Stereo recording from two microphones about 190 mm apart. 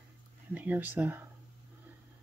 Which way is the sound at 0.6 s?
10° right (ahead or behind).